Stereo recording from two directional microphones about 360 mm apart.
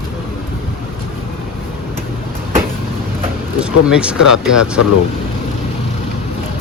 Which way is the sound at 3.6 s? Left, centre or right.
Centre.